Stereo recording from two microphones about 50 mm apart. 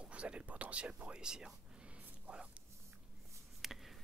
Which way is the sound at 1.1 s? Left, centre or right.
Centre.